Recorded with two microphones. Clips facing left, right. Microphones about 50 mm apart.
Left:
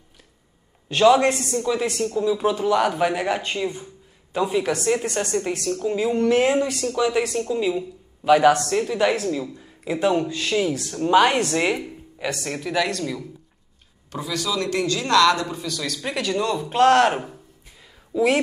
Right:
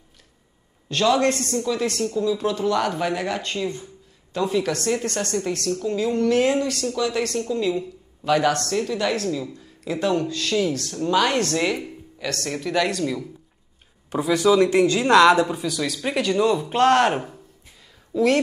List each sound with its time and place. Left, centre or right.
0.8 s speech: centre
12.4 s speech: centre
14.1 s speech: right
15.4 s speech: centre
18.1 s speech: centre